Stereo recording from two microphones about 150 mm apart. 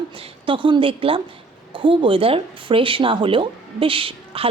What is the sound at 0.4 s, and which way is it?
Speech, 35° right (ahead or behind).